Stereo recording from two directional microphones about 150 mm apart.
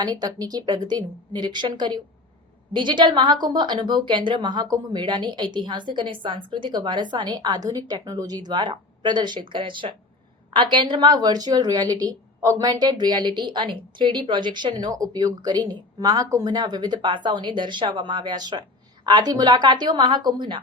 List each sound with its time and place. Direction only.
0.0 s a woman's voice: 25° right (ahead or behind)